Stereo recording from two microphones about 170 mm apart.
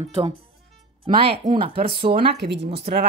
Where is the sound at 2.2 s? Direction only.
80° right.